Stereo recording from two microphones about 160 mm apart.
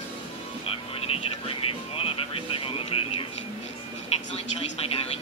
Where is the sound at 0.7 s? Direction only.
35° left (ahead or behind).